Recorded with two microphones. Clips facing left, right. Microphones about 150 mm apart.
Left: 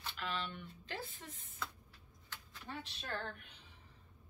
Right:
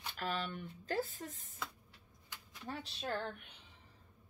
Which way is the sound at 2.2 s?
10° right (ahead or behind).